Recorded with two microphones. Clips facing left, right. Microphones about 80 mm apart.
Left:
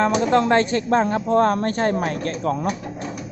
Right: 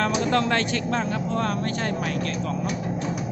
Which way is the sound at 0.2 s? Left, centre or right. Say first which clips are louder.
Left 5 dB; left.